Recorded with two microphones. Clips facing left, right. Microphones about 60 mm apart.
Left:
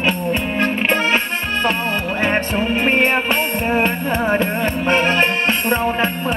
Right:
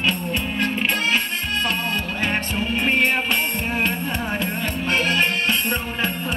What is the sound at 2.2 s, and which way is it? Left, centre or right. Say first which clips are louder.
Music: left 7 dB; left.